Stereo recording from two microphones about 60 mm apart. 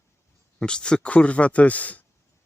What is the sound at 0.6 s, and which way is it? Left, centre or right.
A man's voice, centre.